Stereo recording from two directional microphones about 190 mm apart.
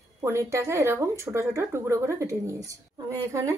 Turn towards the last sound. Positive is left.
turn(degrees=-15)  # may be behind; listen again after turning